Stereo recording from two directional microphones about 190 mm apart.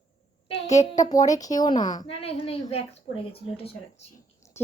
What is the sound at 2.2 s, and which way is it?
A woman's voice, 30° left (ahead or behind).